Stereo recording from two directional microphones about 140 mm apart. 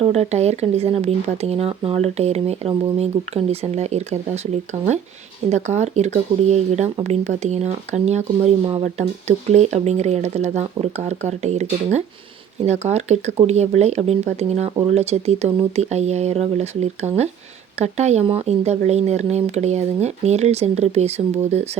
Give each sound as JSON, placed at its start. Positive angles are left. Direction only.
{"t": 0.0, "sound": "speech", "side_deg": -50}